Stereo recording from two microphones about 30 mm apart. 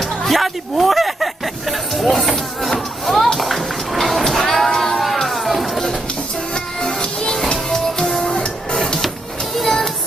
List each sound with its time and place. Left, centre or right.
0.0 s music: centre
3.9 s vehicle: centre
4.3 s music: centre
6.5 s music: left
9.6 s music: centre